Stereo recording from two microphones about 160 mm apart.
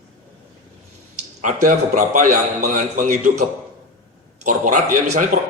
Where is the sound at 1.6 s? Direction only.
55° right (ahead or behind).